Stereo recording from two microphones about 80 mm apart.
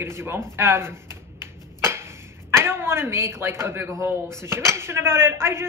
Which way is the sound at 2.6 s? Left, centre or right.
Right.